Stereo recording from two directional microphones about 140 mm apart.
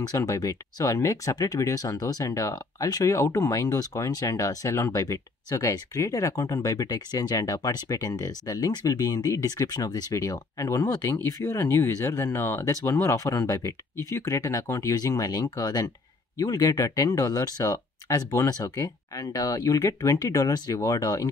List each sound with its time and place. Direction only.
0.0 s speech: 25° left (ahead or behind)